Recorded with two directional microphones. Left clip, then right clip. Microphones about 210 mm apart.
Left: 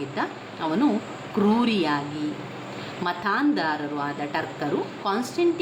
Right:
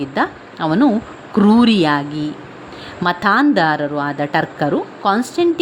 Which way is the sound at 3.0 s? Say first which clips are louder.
Right 10 dB; 50° right (ahead or behind).